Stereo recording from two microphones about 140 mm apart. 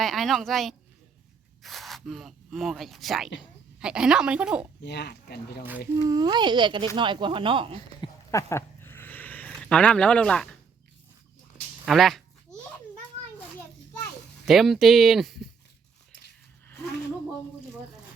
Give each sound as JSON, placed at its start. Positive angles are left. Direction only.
{"t": 0.0, "sound": "speech", "side_deg": 0}
{"t": 6.0, "sound": "speech", "side_deg": -30}
{"t": 7.8, "sound": "a sound", "side_deg": 25}
{"t": 9.5, "sound": "speech", "side_deg": 5}
{"t": 11.9, "sound": "a sound", "side_deg": 0}
{"t": 14.4, "sound": "speech", "side_deg": 0}